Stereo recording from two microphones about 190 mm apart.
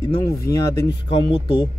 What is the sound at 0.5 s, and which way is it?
Speech, 20° left (ahead or behind).